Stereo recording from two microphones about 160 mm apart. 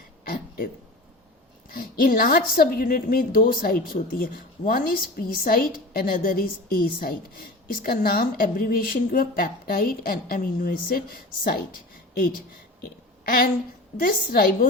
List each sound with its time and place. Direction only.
1.7 s a woman's voice: 65° left (ahead or behind)
12.8 s a sound: 65° left (ahead or behind)
13.9 s a woman's voice: 60° left (ahead or behind)